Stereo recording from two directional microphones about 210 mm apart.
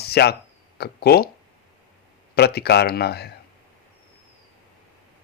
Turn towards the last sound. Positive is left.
turn(degrees=50)  # may be behind; listen again after turning